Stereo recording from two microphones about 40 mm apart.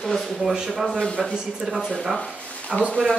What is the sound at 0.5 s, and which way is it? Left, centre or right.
Speech, centre.